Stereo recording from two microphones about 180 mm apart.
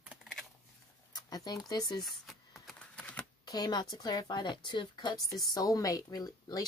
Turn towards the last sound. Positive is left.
turn(degrees=20)  # may be behind; listen again after turning